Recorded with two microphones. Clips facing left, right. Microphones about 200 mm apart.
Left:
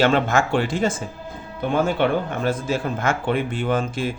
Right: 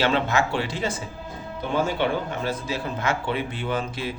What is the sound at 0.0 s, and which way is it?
A man's voice, 50° left (ahead or behind).